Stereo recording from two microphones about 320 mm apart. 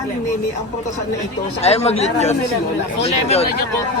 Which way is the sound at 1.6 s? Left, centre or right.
Centre.